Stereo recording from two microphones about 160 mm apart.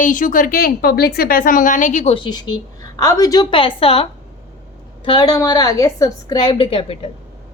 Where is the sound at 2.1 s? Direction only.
30° left (ahead or behind).